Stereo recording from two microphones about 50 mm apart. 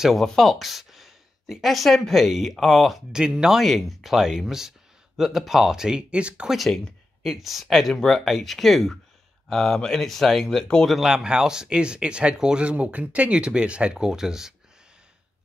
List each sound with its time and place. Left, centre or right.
0.1 s speech: centre
3.1 s speech: centre
3.5 s speech: centre; by 6.5 s right
6.5 s speech: centre
10.9 s speech: centre